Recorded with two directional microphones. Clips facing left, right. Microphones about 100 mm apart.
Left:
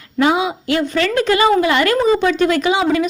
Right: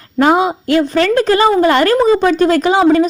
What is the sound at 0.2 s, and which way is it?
Speech, 45° right (ahead or behind).